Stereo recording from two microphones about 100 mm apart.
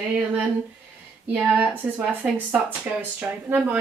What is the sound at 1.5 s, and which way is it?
Speech, 15° right (ahead or behind).